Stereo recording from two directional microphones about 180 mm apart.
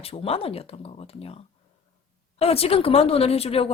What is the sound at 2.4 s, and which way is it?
A woman's voice, 35° left (ahead or behind).